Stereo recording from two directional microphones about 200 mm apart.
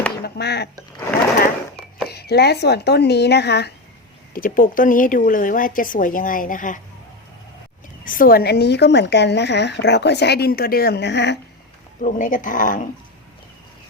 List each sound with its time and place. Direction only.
0.3 s a woman's voice: 55° left (ahead or behind)
2.0 s a woman's voice: 55° left (ahead or behind)
4.4 s a woman's voice: 45° left (ahead or behind)
8.0 s a woman's voice: 45° left (ahead or behind); by 11.3 s 60° left (ahead or behind)
12.0 s speech: 40° left (ahead or behind)